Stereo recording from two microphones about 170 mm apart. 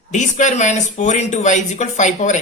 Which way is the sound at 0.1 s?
45° left (ahead or behind).